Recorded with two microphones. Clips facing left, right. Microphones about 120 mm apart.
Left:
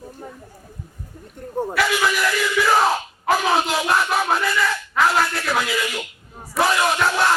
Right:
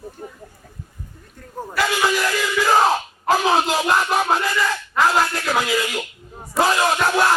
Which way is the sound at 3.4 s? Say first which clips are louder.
Right 2 dB; 30° right (ahead or behind).